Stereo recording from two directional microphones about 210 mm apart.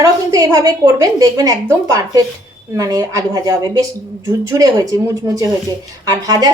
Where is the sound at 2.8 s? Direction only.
15° right (ahead or behind).